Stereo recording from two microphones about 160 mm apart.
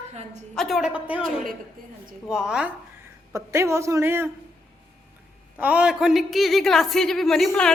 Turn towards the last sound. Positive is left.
turn(degrees=5)  # may be behind; listen again after turning